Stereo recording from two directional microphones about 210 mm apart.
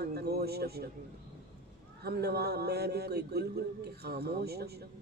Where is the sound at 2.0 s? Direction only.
50° right (ahead or behind).